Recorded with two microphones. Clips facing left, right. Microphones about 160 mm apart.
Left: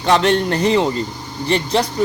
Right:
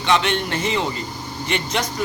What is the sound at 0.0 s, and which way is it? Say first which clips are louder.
A man's voice: left 5 dB; 40° left (ahead or behind).